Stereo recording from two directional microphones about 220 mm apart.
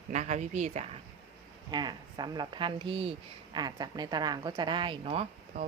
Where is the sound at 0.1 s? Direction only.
30° right (ahead or behind).